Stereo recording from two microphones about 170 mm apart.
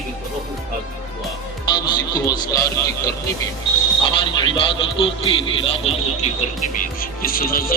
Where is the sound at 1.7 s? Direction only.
25° left (ahead or behind).